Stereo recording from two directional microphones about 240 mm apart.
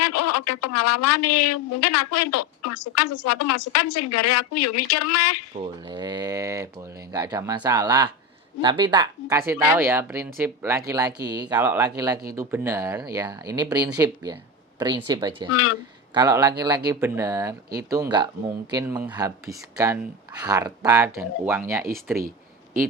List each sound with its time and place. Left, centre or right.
0.0 s speech: left
5.6 s speech: centre